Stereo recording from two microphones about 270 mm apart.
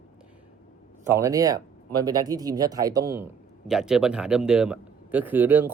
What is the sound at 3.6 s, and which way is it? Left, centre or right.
Speech, centre.